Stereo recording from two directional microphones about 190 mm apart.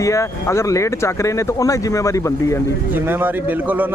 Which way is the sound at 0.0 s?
15° left (ahead or behind).